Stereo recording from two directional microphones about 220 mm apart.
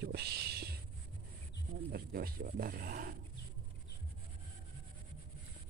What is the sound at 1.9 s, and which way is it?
Speech, 45° right (ahead or behind).